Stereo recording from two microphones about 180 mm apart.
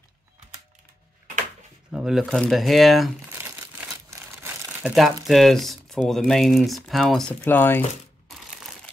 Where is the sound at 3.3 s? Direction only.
10° right (ahead or behind).